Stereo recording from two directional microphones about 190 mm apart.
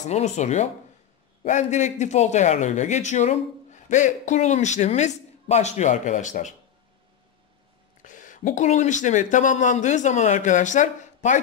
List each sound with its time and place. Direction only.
0.0 s speech: 35° left (ahead or behind)
8.0 s speech: 40° left (ahead or behind)